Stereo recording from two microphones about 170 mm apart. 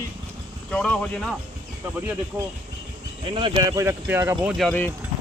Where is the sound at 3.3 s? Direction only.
30° right (ahead or behind); by 4.6 s 10° right (ahead or behind).